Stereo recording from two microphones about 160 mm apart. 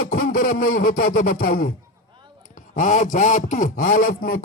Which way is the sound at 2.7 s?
55° left (ahead or behind).